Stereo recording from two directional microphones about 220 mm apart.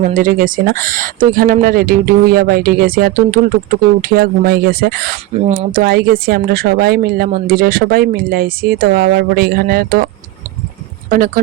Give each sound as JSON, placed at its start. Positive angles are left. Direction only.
{"t": 0.1, "sound": "speech", "side_deg": -40}